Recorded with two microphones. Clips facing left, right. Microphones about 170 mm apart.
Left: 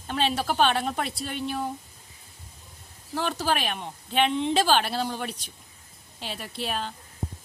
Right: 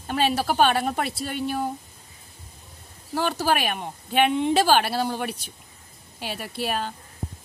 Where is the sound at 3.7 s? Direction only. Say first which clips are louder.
Right 3 dB; 55° right (ahead or behind).